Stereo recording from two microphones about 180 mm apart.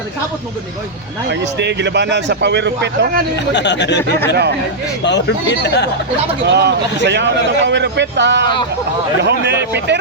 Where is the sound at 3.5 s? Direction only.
75° left (ahead or behind).